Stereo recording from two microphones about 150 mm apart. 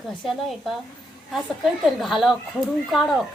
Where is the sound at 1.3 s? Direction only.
Centre (ahead or behind).